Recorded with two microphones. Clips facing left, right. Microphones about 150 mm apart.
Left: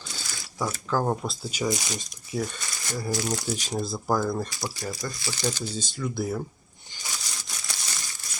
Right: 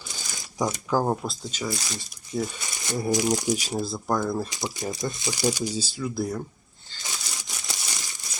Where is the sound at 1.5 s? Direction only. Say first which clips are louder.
Left 6 dB; 20° left (ahead or behind).